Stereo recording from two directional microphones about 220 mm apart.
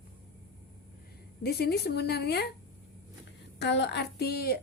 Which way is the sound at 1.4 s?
45° left (ahead or behind).